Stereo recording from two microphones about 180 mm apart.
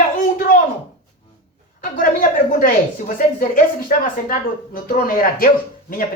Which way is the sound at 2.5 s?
50° left (ahead or behind).